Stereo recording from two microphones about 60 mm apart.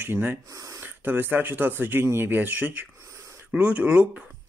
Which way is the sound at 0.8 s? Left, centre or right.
Right.